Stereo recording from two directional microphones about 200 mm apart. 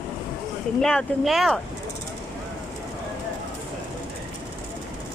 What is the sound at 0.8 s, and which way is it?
Speech, 5° left (ahead or behind).